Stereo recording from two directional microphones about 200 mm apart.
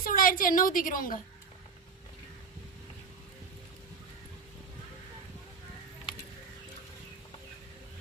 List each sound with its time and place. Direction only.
0.0 s a woman's voice: 45° left (ahead or behind)